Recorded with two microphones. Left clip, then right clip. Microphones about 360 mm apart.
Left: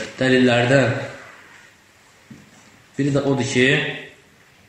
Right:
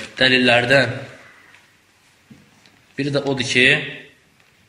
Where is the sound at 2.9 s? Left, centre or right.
Right.